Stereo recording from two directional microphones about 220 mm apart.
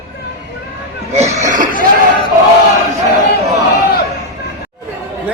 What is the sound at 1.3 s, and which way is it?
Cough, 35° right (ahead or behind).